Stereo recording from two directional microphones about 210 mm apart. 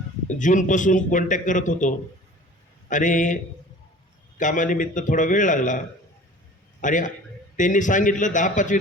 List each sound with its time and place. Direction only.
0.3 s a man's voice: 35° left (ahead or behind)
2.9 s a man's voice: 40° left (ahead or behind)
6.8 s a man's voice: 40° left (ahead or behind)